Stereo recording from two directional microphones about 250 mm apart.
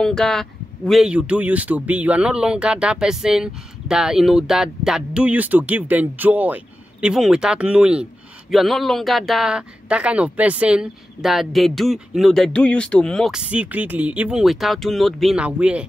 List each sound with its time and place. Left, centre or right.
0.0 s a man's voice: centre